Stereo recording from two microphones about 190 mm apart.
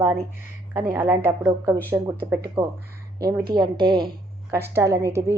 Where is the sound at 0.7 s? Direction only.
15° right (ahead or behind).